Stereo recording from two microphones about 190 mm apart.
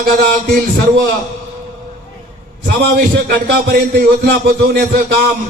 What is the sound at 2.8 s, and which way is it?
A man's voice, 60° right (ahead or behind).